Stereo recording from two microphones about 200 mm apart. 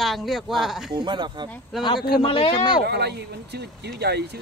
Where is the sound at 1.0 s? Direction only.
20° right (ahead or behind).